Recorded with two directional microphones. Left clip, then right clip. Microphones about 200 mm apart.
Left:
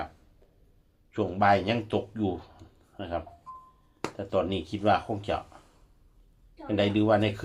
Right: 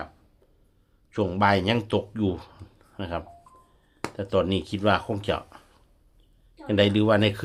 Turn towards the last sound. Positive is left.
turn(degrees=-45)  # may be behind; listen again after turning